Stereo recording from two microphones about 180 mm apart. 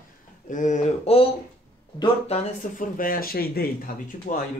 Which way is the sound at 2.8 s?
50° left (ahead or behind).